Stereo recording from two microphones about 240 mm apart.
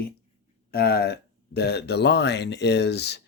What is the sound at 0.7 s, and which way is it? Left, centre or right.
Speech, left.